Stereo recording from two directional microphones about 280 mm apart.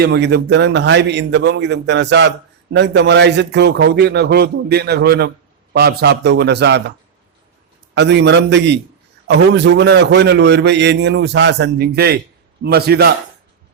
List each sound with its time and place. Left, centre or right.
0.0 s a man's voice: right
7.9 s a man's voice: right